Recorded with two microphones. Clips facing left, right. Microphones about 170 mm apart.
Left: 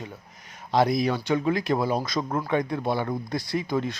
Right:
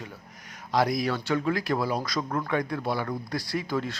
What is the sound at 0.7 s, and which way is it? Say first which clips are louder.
Speech: left 3 dB; 25° left (ahead or behind).